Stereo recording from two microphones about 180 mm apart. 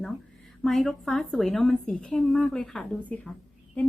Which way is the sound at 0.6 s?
Centre (ahead or behind).